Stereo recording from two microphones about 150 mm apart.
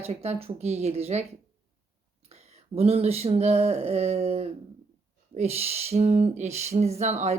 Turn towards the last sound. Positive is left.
turn(degrees=-50)  # may be behind; listen again after turning